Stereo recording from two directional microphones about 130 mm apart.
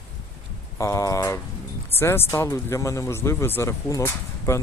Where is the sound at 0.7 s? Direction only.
25° left (ahead or behind).